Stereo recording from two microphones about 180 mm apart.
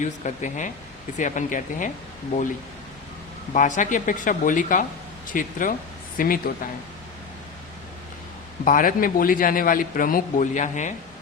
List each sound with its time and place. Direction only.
0.0 s a man's voice: 45° left (ahead or behind)
3.5 s a man's voice: 45° left (ahead or behind)
8.6 s a man's voice: 50° left (ahead or behind)